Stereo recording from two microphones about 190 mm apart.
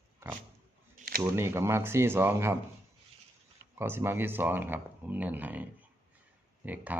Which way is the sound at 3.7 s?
10° right (ahead or behind).